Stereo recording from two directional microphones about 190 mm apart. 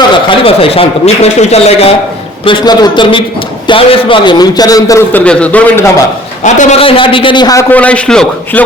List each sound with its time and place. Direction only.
0.3 s a man's voice: 30° left (ahead or behind); by 5.9 s 10° left (ahead or behind)
6.4 s a man's voice: 40° left (ahead or behind); by 7.6 s 20° left (ahead or behind)
7.7 s a man's voice: 5° left (ahead or behind)